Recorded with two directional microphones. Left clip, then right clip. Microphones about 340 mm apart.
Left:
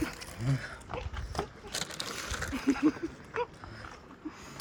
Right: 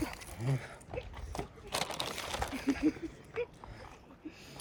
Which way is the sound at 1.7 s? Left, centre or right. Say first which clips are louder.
Right 2 dB; right.